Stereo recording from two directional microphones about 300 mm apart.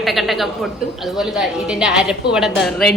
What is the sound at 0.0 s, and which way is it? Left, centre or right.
A woman's voice, centre.